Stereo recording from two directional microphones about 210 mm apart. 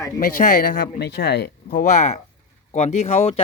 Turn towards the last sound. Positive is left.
turn(degrees=30)  # may be behind; listen again after turning